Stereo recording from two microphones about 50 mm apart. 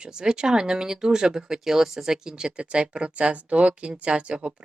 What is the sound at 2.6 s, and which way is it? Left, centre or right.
Speech, right.